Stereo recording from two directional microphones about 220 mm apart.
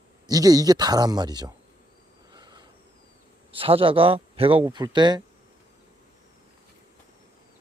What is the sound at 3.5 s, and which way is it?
A man's voice, 25° right (ahead or behind).